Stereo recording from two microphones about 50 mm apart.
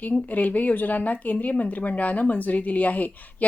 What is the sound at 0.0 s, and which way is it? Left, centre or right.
Speech, left.